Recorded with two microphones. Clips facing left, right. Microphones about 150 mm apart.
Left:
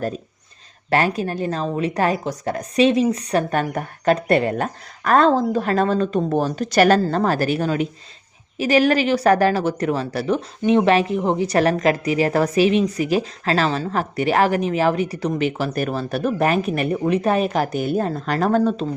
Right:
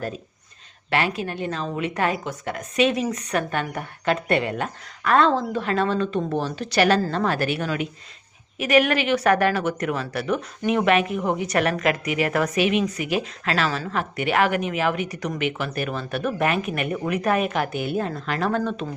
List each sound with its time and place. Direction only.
0.9 s a woman's voice: 40° left (ahead or behind)